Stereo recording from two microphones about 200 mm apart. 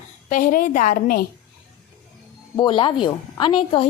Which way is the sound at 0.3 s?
40° left (ahead or behind).